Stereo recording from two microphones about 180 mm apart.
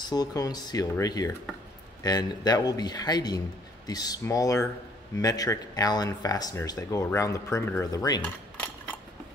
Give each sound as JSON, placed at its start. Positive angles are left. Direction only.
{"t": 0.1, "sound": "speech", "side_deg": 20}
{"t": 8.2, "sound": "cutlery", "side_deg": 10}